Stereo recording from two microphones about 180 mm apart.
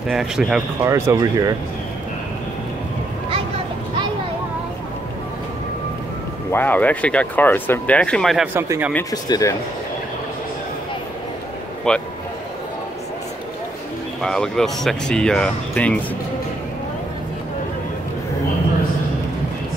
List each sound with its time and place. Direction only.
0.1 s speech: centre (ahead or behind)
0.7 s speech: 15° right (ahead or behind)
6.5 s speech: 10° left (ahead or behind)
8.5 s speech: 15° right (ahead or behind)
9.1 s speech: 20° left (ahead or behind)
11.9 s speech: 5° left (ahead or behind)
14.2 s speech: 5° left (ahead or behind)